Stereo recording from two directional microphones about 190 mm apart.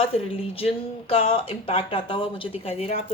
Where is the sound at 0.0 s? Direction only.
30° left (ahead or behind).